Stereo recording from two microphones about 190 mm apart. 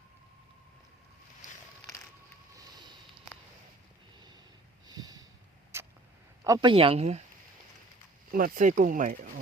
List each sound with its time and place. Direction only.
4.9 s a sound: 20° right (ahead or behind)
5.7 s vehicle: 15° right (ahead or behind)
6.4 s speech: 20° right (ahead or behind)
8.3 s speech: 45° right (ahead or behind)